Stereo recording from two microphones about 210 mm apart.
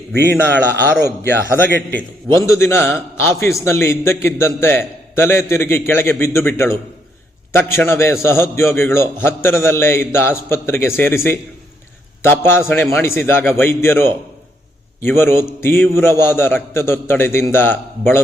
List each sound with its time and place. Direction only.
0.1 s a man's voice: 50° right (ahead or behind)
2.5 s a man's voice: 10° left (ahead or behind)